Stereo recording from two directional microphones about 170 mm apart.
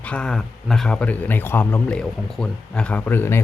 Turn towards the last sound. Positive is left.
turn(degrees=15)  # may be behind; listen again after turning